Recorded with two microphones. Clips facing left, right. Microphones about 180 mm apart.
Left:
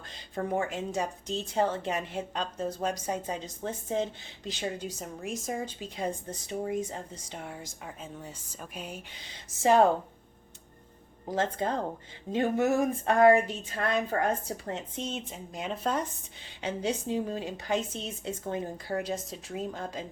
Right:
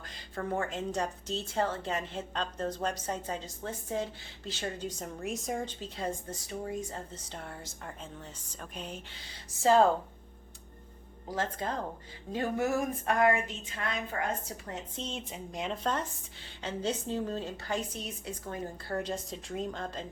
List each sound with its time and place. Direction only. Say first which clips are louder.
0.1 s a woman's voice: left 3 dB; 15° left (ahead or behind)
11.3 s a woman's voice: left 5 dB; 25° left (ahead or behind)
14.9 s a woman's voice: left 3 dB; 5° left (ahead or behind); by 18.7 s 25° left (ahead or behind)
18.9 s a woman's voice: left 1 dB; 10° left (ahead or behind)